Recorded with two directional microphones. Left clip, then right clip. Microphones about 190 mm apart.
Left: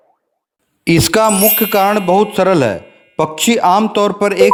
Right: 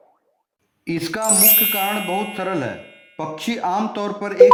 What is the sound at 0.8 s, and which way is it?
Speech, 45° left (ahead or behind).